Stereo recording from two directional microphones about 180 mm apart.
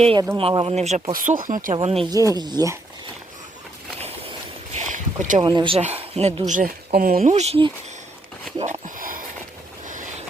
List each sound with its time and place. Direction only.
0.3 s speech: 30° right (ahead or behind); by 1.7 s 50° right (ahead or behind)
1.7 s speech: 35° right (ahead or behind)
2.0 s speech: 20° right (ahead or behind)
4.7 s boat: 40° right (ahead or behind)
5.4 s speech: 25° right (ahead or behind)
6.5 s speech: 50° right (ahead or behind)
7.2 s speech: 40° right (ahead or behind)
8.5 s a sound: 40° right (ahead or behind)
9.8 s vehicle: 45° right (ahead or behind)